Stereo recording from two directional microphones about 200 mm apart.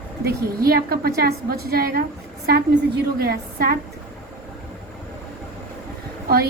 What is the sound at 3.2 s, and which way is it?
Speech, 50° right (ahead or behind).